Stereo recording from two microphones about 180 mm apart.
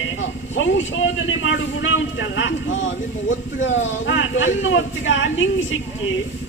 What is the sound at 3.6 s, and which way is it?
Speech, 90° left.